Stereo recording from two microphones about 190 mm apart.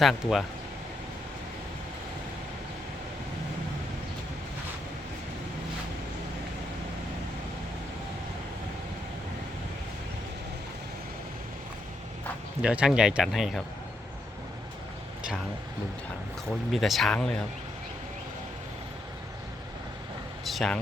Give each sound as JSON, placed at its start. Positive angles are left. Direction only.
{"t": 0.0, "sound": "speech", "side_deg": 0}
{"t": 12.6, "sound": "speech", "side_deg": -5}
{"t": 16.7, "sound": "speech", "side_deg": 0}
{"t": 20.4, "sound": "a sound", "side_deg": 0}